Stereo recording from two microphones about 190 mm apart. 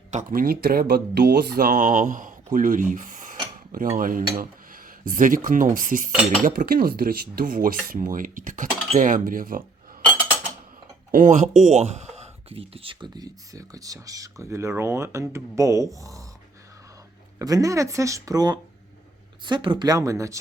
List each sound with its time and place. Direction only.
0.1 s speech: 45° right (ahead or behind)
11.1 s speech: 40° right (ahead or behind); by 16.2 s 15° right (ahead or behind)
17.4 s speech: 20° right (ahead or behind)